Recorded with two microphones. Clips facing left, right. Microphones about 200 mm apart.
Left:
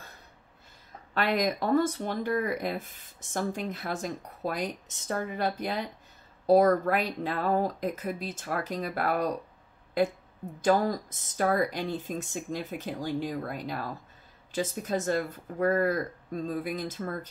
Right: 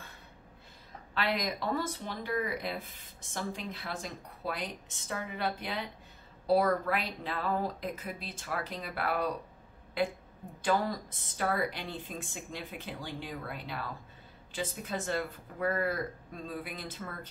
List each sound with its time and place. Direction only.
1.1 s speech: 45° left (ahead or behind)